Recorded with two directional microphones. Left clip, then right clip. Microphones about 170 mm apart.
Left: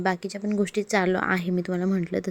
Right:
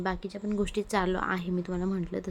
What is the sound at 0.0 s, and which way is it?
Speech, 25° left (ahead or behind).